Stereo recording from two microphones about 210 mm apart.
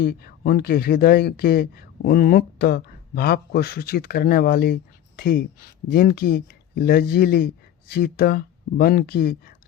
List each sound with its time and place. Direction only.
0.0 s speech: 45° left (ahead or behind)